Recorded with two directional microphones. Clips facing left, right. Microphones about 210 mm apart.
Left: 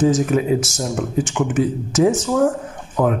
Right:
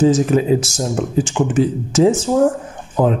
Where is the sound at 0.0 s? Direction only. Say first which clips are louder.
Right 3 dB; 25° right (ahead or behind).